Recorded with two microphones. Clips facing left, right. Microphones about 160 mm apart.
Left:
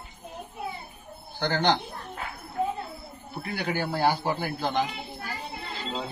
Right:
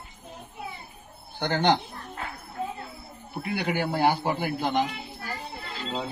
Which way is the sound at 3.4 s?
20° right (ahead or behind).